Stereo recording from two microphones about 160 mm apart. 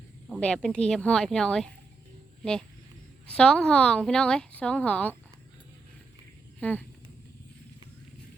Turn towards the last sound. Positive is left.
turn(degrees=10)  # may be behind; listen again after turning